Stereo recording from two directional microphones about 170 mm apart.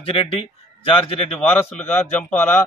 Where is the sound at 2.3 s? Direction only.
5° left (ahead or behind).